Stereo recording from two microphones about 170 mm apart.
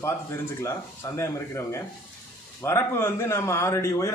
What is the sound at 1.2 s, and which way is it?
A man's voice, 15° left (ahead or behind).